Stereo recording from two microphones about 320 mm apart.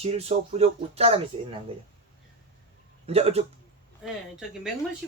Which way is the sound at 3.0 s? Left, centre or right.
Centre.